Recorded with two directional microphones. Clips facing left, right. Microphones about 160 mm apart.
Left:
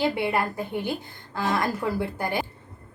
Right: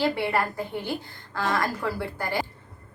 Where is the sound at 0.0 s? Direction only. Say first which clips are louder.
Even; 20° left (ahead or behind).